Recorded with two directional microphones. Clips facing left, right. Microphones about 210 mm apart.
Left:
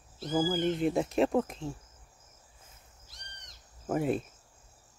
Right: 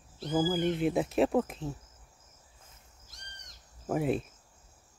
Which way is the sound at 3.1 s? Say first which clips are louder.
Even; 45° right (ahead or behind).